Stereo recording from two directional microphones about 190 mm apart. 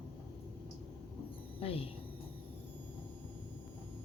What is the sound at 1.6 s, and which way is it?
Speech, 30° left (ahead or behind).